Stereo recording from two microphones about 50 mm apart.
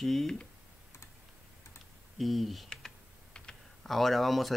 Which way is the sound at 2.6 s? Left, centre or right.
Centre.